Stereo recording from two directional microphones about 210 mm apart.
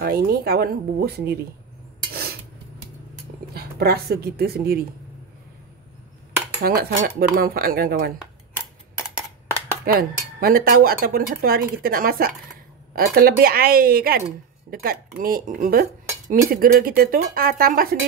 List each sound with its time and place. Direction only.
0.0 s cutlery: 45° right (ahead or behind)
3.5 s a woman's voice: 50° right (ahead or behind)
6.6 s cutlery: 45° right (ahead or behind)
9.8 s cutlery: 45° right (ahead or behind)